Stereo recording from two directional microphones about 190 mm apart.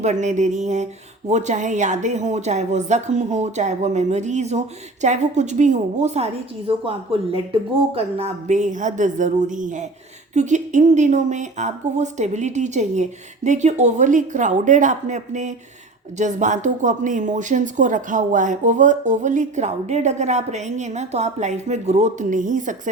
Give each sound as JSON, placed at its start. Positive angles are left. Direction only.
{"t": 0.0, "sound": "speech", "side_deg": -40}